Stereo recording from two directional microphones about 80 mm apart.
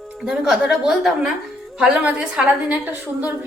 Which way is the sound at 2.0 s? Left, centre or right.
Centre.